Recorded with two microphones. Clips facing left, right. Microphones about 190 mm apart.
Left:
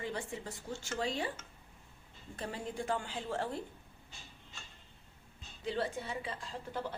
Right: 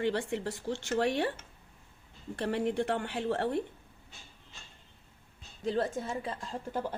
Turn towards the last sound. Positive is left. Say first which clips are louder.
# right 5 dB
turn(degrees=-45)  # may be behind; listen again after turning